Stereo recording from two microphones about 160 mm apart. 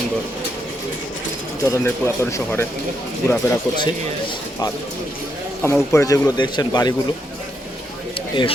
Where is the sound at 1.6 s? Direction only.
20° left (ahead or behind).